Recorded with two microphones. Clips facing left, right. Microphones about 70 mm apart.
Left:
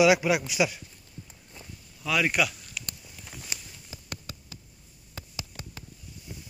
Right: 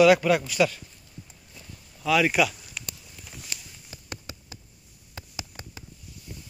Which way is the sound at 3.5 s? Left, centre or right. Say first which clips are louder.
Left 1 dB; centre.